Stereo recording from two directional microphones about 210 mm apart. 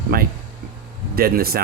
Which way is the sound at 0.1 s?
45° right (ahead or behind).